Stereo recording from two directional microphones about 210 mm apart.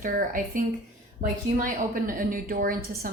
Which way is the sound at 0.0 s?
40° right (ahead or behind).